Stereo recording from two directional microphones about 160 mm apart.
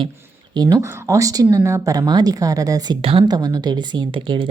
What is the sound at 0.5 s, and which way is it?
Speech, 25° right (ahead or behind).